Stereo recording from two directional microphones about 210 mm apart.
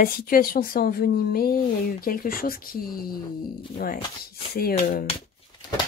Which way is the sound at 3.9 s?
20° left (ahead or behind).